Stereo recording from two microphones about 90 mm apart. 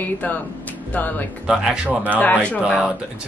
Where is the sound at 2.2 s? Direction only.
15° left (ahead or behind).